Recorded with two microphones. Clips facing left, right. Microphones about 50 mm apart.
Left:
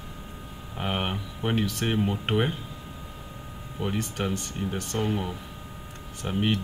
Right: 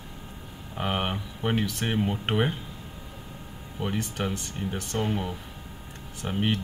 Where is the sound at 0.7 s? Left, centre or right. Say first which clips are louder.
Right 1 dB; centre.